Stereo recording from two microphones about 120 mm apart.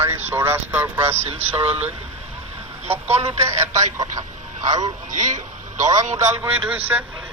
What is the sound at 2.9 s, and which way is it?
Speech, 55° right (ahead or behind).